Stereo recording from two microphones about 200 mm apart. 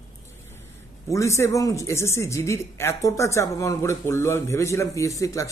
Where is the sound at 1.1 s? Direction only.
15° left (ahead or behind).